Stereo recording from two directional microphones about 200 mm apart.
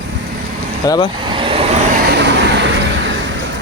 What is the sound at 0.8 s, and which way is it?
Speech, 15° left (ahead or behind).